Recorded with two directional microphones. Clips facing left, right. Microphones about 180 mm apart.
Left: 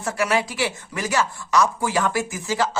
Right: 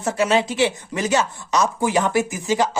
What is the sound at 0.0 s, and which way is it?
Speech, 20° right (ahead or behind).